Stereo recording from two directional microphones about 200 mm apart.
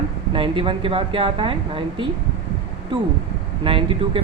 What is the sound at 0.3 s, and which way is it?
Speech, 25° right (ahead or behind).